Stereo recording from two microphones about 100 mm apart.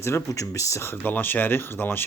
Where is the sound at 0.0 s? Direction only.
30° left (ahead or behind).